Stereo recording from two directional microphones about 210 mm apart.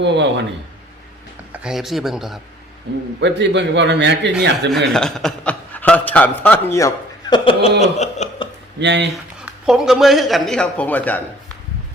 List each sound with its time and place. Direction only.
0.0 s a man's voice: 55° right (ahead or behind)
1.5 s a man's voice: 5° right (ahead or behind)
3.2 s a man's voice: 55° right (ahead or behind)
4.9 s a man's voice: 5° left (ahead or behind); by 7.7 s 25° left (ahead or behind)
7.8 s chuckle: 35° left (ahead or behind)
8.8 s a man's voice: 55° right (ahead or behind)
9.6 s a man's voice: centre (ahead or behind)